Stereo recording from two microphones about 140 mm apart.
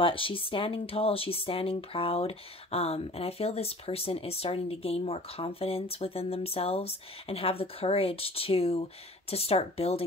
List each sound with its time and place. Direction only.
0.0 s speech: 40° left (ahead or behind)